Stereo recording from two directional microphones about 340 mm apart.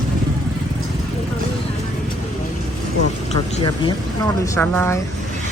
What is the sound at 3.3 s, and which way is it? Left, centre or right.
Speech, centre.